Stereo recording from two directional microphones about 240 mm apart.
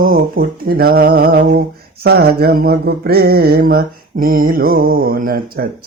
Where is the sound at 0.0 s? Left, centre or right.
Right.